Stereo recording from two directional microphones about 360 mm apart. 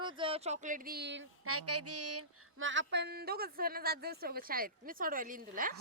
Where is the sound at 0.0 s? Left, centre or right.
Centre.